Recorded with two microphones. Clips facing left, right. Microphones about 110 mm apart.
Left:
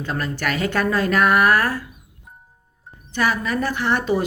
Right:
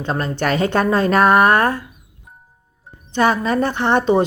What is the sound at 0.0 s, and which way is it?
Speech, 30° right (ahead or behind).